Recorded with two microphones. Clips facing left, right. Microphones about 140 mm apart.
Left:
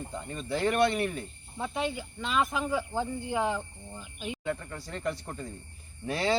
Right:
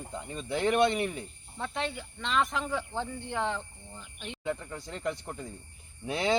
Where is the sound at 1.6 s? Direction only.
5° left (ahead or behind).